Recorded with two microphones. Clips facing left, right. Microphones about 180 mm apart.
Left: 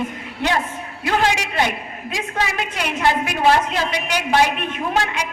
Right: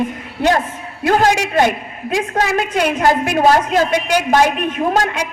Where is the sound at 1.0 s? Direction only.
45° right (ahead or behind).